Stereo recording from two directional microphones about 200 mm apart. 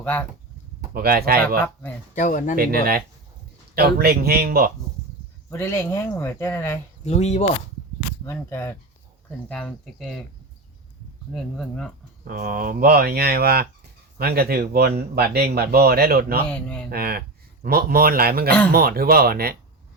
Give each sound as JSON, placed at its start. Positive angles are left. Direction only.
{"t": 0.0, "sound": "speech", "side_deg": 5}
{"t": 0.9, "sound": "speech", "side_deg": -50}
{"t": 2.1, "sound": "speech", "side_deg": 40}
{"t": 2.6, "sound": "speech", "side_deg": -50}
{"t": 5.5, "sound": "speech", "side_deg": 10}
{"t": 7.0, "sound": "speech", "side_deg": 35}
{"t": 8.2, "sound": "speech", "side_deg": 10}
{"t": 11.3, "sound": "speech", "side_deg": 0}
{"t": 12.3, "sound": "speech", "side_deg": -45}
{"t": 16.5, "sound": "speech", "side_deg": 5}
{"t": 16.9, "sound": "speech", "side_deg": -50}